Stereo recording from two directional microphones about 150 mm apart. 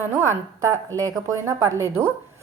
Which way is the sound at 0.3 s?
20° right (ahead or behind).